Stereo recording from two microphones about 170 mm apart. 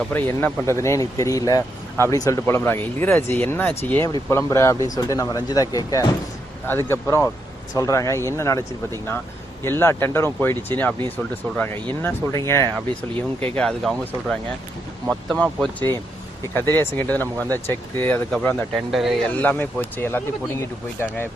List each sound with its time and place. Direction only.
0.1 s speech: 15° left (ahead or behind)
13.6 s speech: 5° left (ahead or behind)
19.3 s speech: 10° left (ahead or behind)